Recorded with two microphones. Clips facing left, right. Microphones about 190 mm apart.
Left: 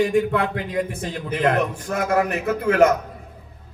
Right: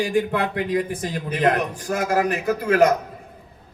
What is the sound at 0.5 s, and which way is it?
Speech, 25° left (ahead or behind).